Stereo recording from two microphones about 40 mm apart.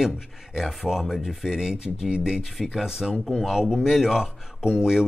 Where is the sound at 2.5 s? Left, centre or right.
Centre.